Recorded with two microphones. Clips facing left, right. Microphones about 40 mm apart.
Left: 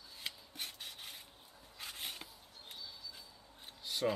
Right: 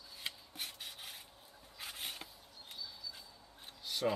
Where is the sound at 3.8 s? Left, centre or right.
Centre.